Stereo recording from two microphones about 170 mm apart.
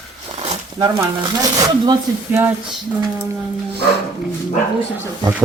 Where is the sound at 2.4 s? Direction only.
10° right (ahead or behind).